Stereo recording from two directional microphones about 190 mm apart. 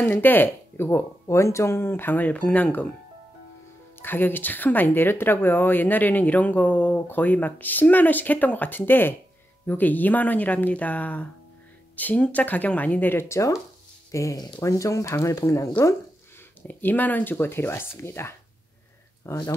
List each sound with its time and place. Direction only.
0.0 s speech: 10° left (ahead or behind)
4.0 s speech: 10° left (ahead or behind)